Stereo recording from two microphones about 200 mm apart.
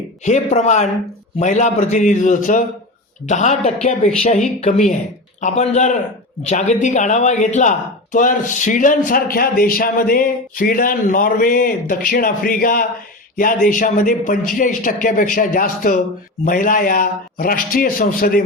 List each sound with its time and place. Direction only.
0.3 s a man's voice: 35° left (ahead or behind)
5.4 s a man's voice: 35° left (ahead or behind)